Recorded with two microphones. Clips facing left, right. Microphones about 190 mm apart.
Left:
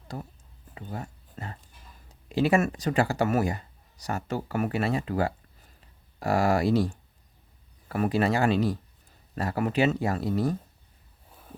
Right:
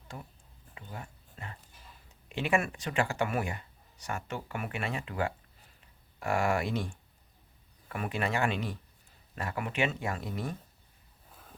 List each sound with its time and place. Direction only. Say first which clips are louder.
0.1 s speech: left 7 dB; 40° left (ahead or behind)
0.7 s a sound: left 7 dB; 40° left (ahead or behind)
2.0 s speech: left 7 dB; 35° left (ahead or behind)